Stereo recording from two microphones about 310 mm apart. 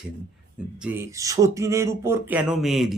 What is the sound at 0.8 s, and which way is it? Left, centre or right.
Speech, centre.